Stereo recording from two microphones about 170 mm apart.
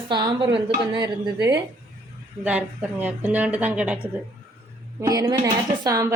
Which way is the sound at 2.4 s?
10° right (ahead or behind).